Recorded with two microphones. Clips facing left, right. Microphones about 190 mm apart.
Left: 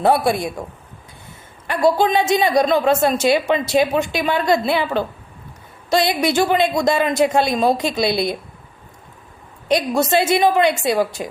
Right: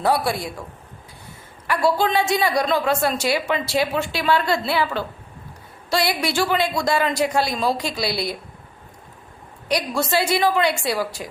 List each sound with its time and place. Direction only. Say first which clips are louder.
0.0 s a woman's voice: left 5 dB; 20° left (ahead or behind)
1.6 s a woman's voice: left 4 dB; 20° left (ahead or behind)
5.9 s a woman's voice: left 5 dB; 20° left (ahead or behind)
9.6 s a woman's voice: left 5 dB; 20° left (ahead or behind)